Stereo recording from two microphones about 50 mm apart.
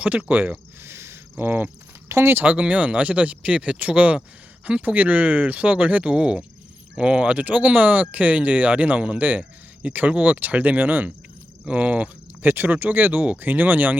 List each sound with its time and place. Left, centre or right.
0.0 s speech: right
0.8 s a sound: right
1.5 s speech: right
2.0 s speech: right
2.3 s speech: right
12.4 s speech: right